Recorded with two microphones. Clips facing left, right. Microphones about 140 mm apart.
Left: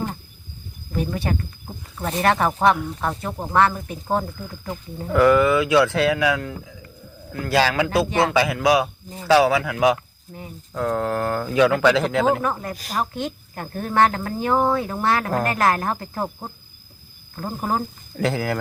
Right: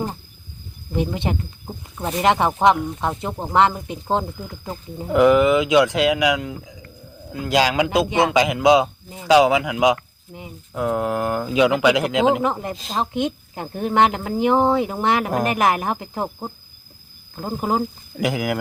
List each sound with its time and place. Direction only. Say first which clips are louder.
0.9 s speech: right 2 dB; 20° right (ahead or behind)
9.0 s speech: right 1 dB; 10° right (ahead or behind)